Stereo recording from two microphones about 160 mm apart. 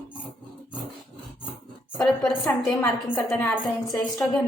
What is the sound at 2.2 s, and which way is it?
A woman's voice, centre (ahead or behind).